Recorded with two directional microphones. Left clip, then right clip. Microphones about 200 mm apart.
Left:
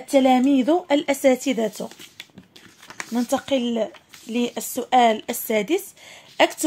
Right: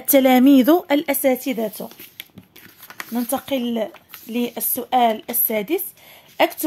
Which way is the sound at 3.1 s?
5° left (ahead or behind).